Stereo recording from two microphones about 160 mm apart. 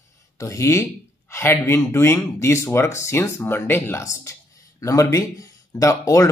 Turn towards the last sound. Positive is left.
turn(degrees=20)  # may be behind; listen again after turning